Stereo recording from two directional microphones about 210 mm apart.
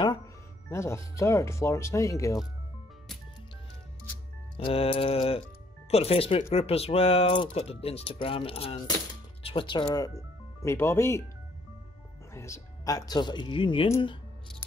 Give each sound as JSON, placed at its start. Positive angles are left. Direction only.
{"t": 0.7, "sound": "speech", "side_deg": 15}
{"t": 4.6, "sound": "speech", "side_deg": 25}
{"t": 12.4, "sound": "speech", "side_deg": 15}